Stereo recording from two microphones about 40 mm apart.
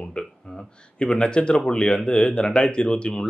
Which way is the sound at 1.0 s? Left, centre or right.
Left.